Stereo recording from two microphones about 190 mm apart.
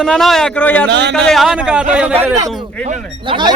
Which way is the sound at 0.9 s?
65° right (ahead or behind).